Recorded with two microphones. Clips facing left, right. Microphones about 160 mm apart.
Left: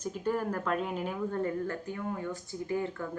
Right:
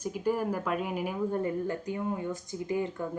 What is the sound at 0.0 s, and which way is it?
Speech, 10° right (ahead or behind).